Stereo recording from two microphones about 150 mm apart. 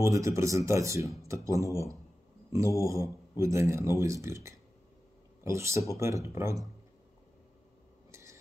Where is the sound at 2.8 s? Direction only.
20° right (ahead or behind).